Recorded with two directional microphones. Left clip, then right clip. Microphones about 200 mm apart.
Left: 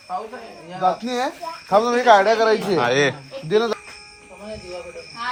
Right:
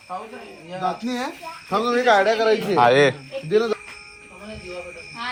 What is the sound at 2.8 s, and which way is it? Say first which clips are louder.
Speech: right 8 dB; centre (ahead or behind).